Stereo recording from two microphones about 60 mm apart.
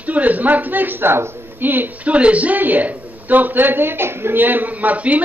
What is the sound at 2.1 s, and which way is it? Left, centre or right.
A woman's voice, right.